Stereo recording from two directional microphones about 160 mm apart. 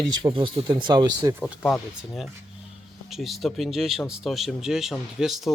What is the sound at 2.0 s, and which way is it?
Speech, centre (ahead or behind).